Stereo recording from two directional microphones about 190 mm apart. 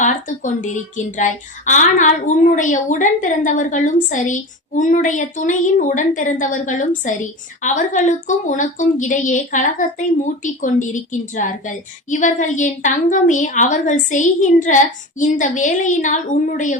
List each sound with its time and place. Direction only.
0.0 s a woman's voice: 40° left (ahead or behind)